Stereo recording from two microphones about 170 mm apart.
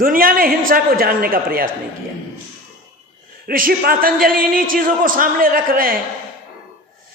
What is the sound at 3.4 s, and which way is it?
Speech, 60° right (ahead or behind).